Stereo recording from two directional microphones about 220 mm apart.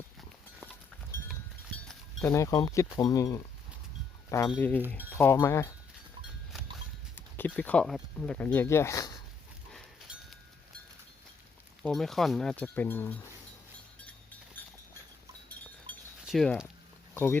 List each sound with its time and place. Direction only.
1.1 s a sound: 10° left (ahead or behind)
1.7 s livestock: 5° left (ahead or behind)
2.3 s speech: 15° left (ahead or behind)
7.2 s speech: 10° left (ahead or behind)
9.7 s livestock: centre (ahead or behind)
11.8 s speech: centre (ahead or behind)
16.2 s speech: centre (ahead or behind)